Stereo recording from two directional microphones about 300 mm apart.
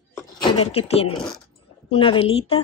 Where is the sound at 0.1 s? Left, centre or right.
Centre.